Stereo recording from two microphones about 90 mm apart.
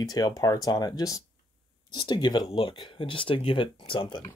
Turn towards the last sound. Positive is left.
turn(degrees=75)  # may be behind; listen again after turning